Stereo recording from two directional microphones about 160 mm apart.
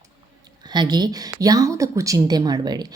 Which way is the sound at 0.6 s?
25° right (ahead or behind).